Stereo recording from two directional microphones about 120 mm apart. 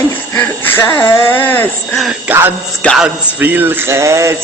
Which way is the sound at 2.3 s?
15° right (ahead or behind).